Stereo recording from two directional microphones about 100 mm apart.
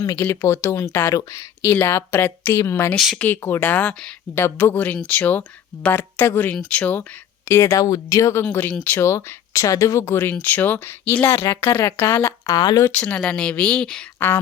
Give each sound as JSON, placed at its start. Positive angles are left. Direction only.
{"t": 0.2, "sound": "speech", "side_deg": 25}
{"t": 2.9, "sound": "speech", "side_deg": 0}
{"t": 3.2, "sound": "speech", "side_deg": 20}
{"t": 4.4, "sound": "speech", "side_deg": 30}
{"t": 7.4, "sound": "speech", "side_deg": 30}
{"t": 8.4, "sound": "speech", "side_deg": 20}
{"t": 12.5, "sound": "speech", "side_deg": 45}
{"t": 12.9, "sound": "speech", "side_deg": 15}
{"t": 14.2, "sound": "speech", "side_deg": 20}